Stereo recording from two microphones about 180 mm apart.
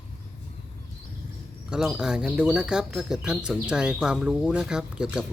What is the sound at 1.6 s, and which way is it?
Speech, centre (ahead or behind).